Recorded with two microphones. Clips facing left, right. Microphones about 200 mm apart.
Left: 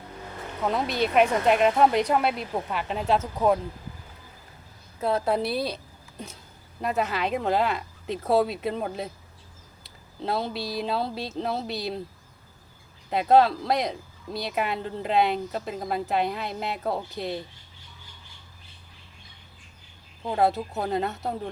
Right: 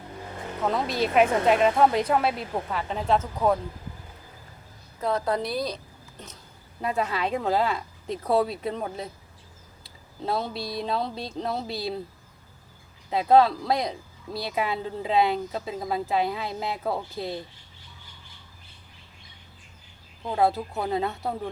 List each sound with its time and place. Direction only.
0.6 s speech: centre (ahead or behind)
4.9 s speech: 5° left (ahead or behind)
5.6 s a sound: 10° left (ahead or behind)
6.8 s speech: centre (ahead or behind)
10.2 s speech: centre (ahead or behind)
13.1 s speech: centre (ahead or behind)
20.2 s speech: centre (ahead or behind)